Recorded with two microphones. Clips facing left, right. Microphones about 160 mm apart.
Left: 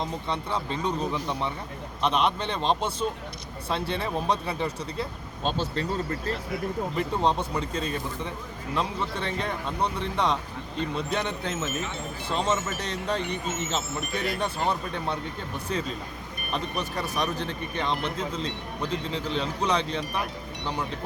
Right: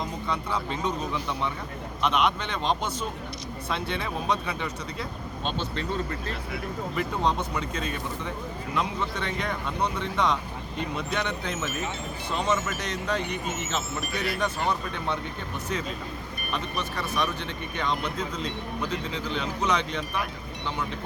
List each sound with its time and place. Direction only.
0.0 s speech: 30° left (ahead or behind)
6.9 s speech: 30° left (ahead or behind)
16.5 s speech: 35° left (ahead or behind)